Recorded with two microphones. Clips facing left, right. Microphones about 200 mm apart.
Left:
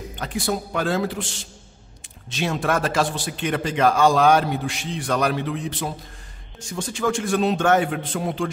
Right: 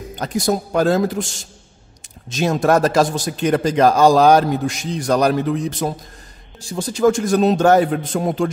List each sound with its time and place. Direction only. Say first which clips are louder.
0.1 s a man's voice: right 6 dB; 40° right (ahead or behind)